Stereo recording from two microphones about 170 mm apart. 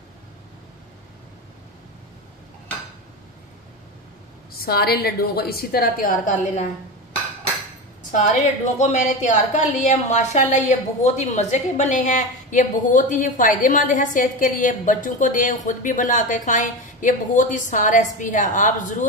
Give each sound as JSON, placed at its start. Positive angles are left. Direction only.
{"t": 4.6, "sound": "a woman's voice", "side_deg": 65}
{"t": 8.1, "sound": "a woman's voice", "side_deg": 45}